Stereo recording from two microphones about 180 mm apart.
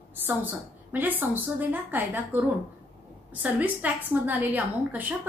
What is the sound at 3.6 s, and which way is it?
A woman's voice, 10° right (ahead or behind).